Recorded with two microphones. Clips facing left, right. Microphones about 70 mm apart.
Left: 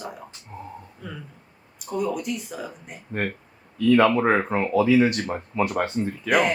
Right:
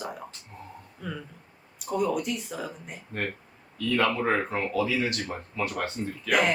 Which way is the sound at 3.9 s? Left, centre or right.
Left.